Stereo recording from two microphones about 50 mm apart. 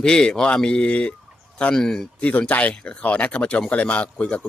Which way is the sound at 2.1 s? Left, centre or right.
Left.